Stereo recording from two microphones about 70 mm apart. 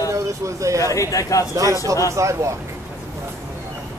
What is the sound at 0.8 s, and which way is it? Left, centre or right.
Speech, left.